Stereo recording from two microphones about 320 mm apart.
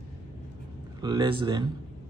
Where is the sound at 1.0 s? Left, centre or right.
Centre.